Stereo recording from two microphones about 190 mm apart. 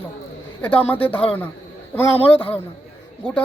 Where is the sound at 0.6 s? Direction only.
10° left (ahead or behind).